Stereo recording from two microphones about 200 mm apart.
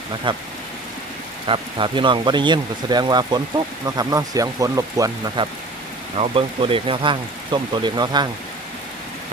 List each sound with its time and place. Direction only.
0.3 s speech: 25° right (ahead or behind)
1.5 s speech: 25° right (ahead or behind)